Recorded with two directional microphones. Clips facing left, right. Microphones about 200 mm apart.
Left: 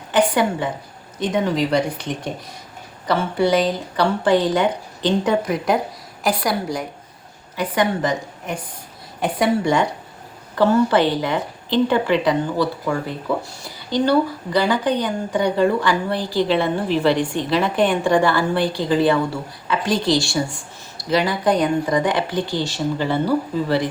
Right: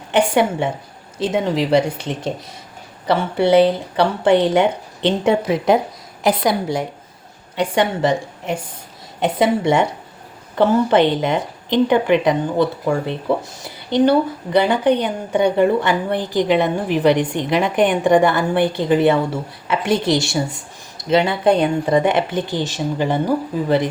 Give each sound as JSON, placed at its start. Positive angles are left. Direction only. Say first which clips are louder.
{"t": 0.1, "sound": "a woman's voice", "louder": "right 2 dB", "side_deg": -25}